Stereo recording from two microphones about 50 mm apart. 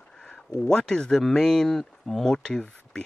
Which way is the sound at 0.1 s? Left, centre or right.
Centre.